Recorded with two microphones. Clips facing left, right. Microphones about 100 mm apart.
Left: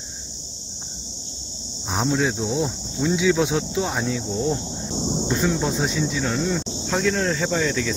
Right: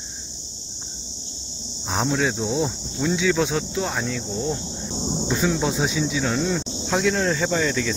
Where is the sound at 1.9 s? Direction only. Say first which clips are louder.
Left 1 dB; centre (ahead or behind).